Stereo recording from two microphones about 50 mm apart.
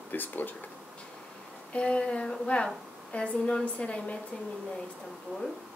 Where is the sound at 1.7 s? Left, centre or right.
Left.